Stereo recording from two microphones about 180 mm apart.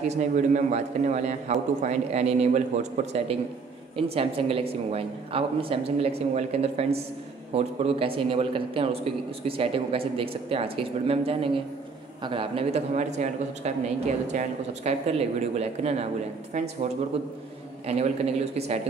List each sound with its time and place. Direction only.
0.0 s a man's voice: 40° right (ahead or behind)
17.8 s a man's voice: 35° right (ahead or behind)